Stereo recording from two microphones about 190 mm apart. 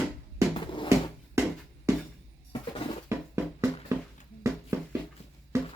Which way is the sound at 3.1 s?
15° right (ahead or behind).